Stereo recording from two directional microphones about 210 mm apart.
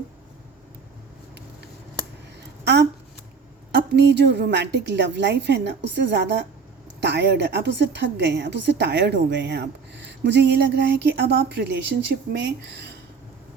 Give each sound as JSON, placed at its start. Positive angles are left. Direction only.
{"t": 3.7, "sound": "a woman's voice", "side_deg": -55}